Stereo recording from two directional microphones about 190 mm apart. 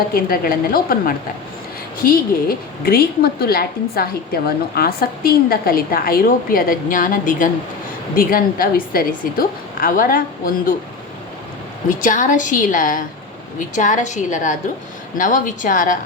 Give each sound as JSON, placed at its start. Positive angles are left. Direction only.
{"t": 0.1, "sound": "a woman's voice", "side_deg": 50}
{"t": 11.9, "sound": "a woman's voice", "side_deg": 40}